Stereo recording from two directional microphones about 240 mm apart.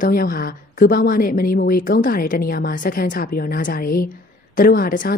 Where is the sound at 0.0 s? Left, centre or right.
Left.